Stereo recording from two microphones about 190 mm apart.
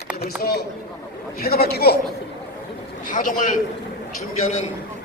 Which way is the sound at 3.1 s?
45° left (ahead or behind).